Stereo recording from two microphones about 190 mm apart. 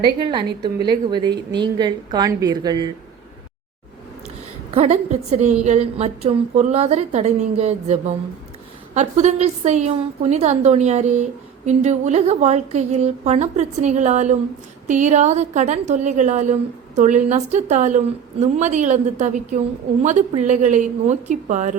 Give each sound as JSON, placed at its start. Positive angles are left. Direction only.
{"t": 0.2, "sound": "a woman's voice", "side_deg": -25}
{"t": 4.7, "sound": "a woman's voice", "side_deg": -35}